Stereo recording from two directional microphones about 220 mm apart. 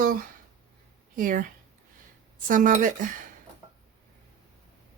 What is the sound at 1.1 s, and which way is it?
Speech, 40° right (ahead or behind).